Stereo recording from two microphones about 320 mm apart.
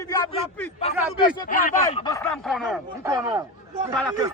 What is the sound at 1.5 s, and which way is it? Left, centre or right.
Speech, left.